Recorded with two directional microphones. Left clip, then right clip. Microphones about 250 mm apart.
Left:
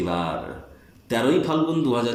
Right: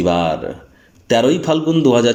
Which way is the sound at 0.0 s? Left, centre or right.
Right.